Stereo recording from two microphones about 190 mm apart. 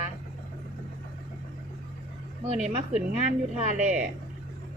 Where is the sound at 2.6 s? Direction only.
40° right (ahead or behind).